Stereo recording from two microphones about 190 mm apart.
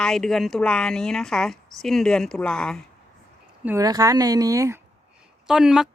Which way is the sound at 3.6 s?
10° right (ahead or behind).